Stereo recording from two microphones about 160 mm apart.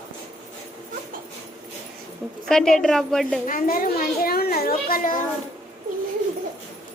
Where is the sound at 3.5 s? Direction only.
60° left (ahead or behind).